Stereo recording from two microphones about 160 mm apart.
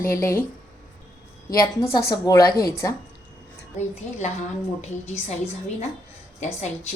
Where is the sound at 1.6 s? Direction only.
25° left (ahead or behind).